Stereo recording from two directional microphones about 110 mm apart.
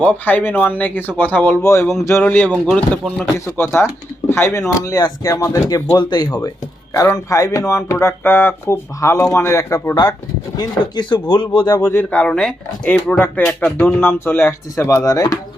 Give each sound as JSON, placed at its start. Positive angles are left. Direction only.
{"t": 0.0, "sound": "speech", "side_deg": 15}
{"t": 4.8, "sound": "speech", "side_deg": 35}
{"t": 9.9, "sound": "speech", "side_deg": 40}
{"t": 11.8, "sound": "speech", "side_deg": 15}